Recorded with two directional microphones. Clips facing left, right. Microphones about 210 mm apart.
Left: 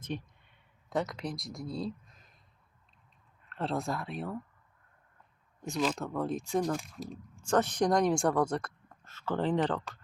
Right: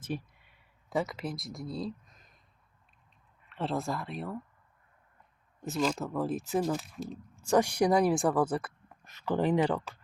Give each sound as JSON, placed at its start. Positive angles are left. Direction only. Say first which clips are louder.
{"t": 0.0, "sound": "speech", "louder": "right 2 dB", "side_deg": -5}
{"t": 3.4, "sound": "speech", "louder": "right 1 dB", "side_deg": 0}
{"t": 5.6, "sound": "speech", "louder": "right 1 dB", "side_deg": 0}